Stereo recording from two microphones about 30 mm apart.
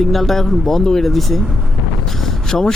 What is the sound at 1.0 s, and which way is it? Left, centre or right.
Speech, centre.